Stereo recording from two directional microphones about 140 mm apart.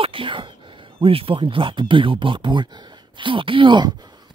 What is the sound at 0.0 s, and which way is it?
Speech, 40° right (ahead or behind).